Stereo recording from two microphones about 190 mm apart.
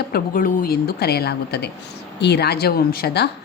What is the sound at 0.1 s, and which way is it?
A woman's voice, 45° left (ahead or behind).